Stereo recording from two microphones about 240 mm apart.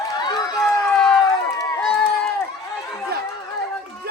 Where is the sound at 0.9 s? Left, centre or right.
Centre.